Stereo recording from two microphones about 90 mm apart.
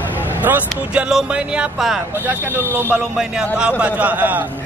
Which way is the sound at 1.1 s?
10° right (ahead or behind).